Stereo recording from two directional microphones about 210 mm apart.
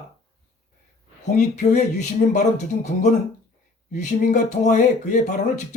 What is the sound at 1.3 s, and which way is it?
Speech, 35° left (ahead or behind).